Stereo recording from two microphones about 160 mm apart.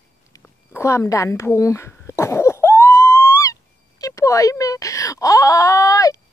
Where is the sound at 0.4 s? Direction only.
15° left (ahead or behind).